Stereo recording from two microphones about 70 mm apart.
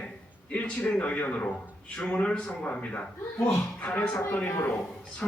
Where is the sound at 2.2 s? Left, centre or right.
Centre.